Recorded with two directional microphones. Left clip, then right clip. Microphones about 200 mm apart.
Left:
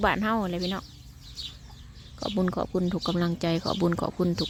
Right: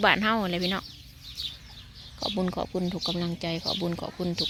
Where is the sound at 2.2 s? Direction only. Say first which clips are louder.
Left 1 dB; 20° left (ahead or behind).